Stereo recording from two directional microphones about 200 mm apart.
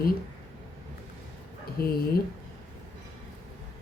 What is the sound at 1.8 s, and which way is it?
Speech, 50° left (ahead or behind).